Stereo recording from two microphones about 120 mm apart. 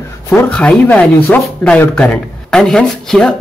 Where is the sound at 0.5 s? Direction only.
10° left (ahead or behind).